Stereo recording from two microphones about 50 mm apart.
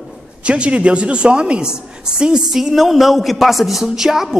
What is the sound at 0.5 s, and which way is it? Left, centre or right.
A woman's voice, right.